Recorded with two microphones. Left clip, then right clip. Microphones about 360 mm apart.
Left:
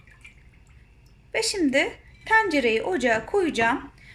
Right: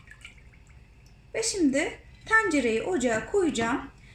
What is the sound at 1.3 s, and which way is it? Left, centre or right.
Speech, left.